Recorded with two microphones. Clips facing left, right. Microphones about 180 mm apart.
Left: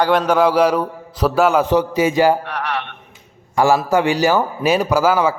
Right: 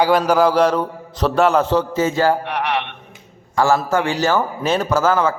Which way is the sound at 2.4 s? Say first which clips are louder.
Right 3 dB; 15° right (ahead or behind).